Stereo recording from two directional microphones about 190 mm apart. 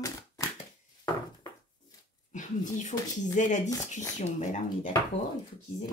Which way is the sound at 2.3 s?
40° left (ahead or behind).